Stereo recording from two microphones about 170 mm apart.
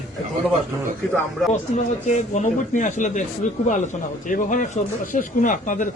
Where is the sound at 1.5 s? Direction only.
45° left (ahead or behind).